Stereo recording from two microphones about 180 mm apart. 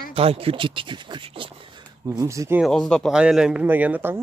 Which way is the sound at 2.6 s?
5° left (ahead or behind).